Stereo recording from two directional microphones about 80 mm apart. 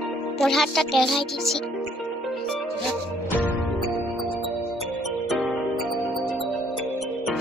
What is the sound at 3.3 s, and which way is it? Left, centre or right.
Music, right.